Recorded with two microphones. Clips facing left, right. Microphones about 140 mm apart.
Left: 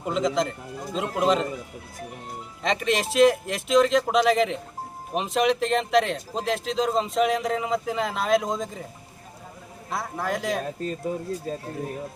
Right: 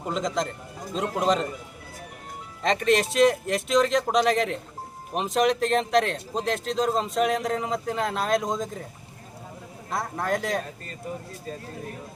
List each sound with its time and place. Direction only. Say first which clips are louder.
0.1 s speech: left 3 dB; centre (ahead or behind)
2.6 s speech: right 2 dB; centre (ahead or behind)
9.9 s speech: right 1 dB; centre (ahead or behind)